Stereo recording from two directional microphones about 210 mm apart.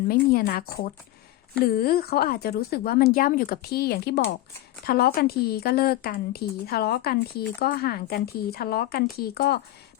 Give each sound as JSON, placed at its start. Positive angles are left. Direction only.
{"t": 0.1, "sound": "a woman's voice", "side_deg": 45}